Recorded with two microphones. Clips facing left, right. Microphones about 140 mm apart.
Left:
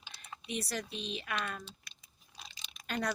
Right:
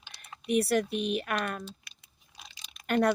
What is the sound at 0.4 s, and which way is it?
Speech, 60° right (ahead or behind).